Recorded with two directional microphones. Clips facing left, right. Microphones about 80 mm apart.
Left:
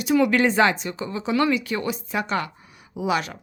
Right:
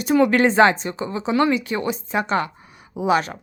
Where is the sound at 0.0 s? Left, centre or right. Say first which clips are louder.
Right 3 dB; right.